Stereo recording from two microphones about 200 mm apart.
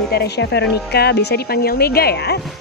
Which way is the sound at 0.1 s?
60° left (ahead or behind).